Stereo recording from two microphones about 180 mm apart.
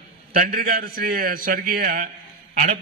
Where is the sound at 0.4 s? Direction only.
55° right (ahead or behind).